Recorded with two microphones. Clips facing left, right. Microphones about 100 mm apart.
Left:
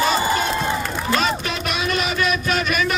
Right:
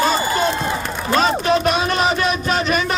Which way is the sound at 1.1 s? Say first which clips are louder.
Right 7 dB; 35° right (ahead or behind).